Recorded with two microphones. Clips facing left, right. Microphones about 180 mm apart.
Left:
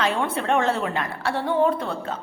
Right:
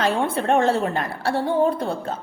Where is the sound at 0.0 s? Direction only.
35° right (ahead or behind).